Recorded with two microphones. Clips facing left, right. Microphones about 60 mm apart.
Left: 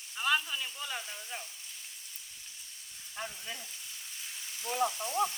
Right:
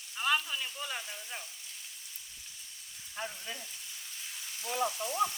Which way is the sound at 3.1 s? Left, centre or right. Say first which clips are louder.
Right 1 dB; centre.